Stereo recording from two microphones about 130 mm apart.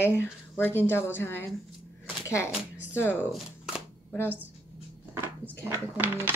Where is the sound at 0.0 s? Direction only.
15° left (ahead or behind).